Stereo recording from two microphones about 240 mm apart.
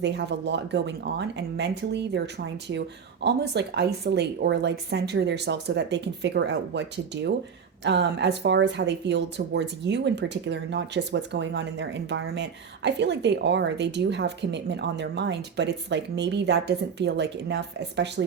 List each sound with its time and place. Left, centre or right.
0.0 s speech: right